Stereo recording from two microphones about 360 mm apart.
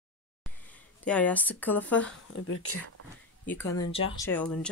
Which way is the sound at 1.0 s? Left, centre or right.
Centre.